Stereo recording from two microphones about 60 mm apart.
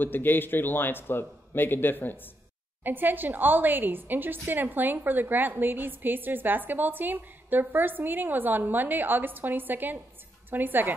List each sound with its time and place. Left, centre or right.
0.0 s a man's voice: left
2.8 s a woman's voice: right